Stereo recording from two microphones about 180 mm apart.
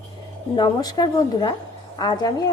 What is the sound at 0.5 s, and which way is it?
A woman's voice, 25° left (ahead or behind).